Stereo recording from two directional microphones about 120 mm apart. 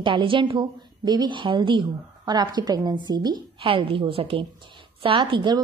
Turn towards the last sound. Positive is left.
turn(degrees=-40)  # may be behind; listen again after turning